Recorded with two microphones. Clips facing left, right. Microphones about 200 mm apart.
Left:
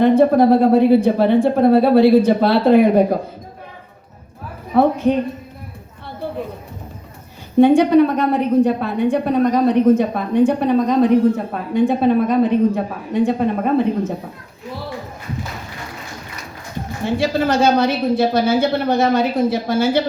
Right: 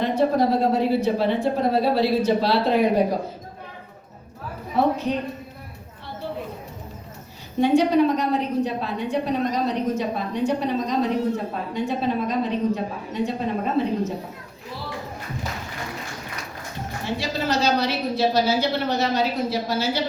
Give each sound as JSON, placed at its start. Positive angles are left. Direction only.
{"t": 0.0, "sound": "a woman's voice", "side_deg": 55}
{"t": 4.7, "sound": "a woman's voice", "side_deg": 55}
{"t": 7.6, "sound": "a woman's voice", "side_deg": 55}
{"t": 17.2, "sound": "a woman's voice", "side_deg": 50}